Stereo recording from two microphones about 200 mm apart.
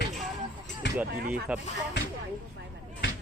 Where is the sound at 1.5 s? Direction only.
5° right (ahead or behind).